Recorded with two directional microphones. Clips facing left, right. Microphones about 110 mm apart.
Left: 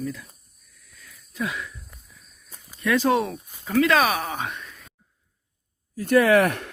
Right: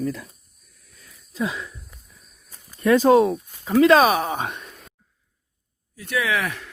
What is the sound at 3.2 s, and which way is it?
Speech, 25° right (ahead or behind).